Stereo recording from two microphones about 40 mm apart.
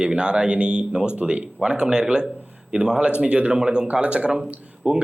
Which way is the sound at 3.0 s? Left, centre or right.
Right.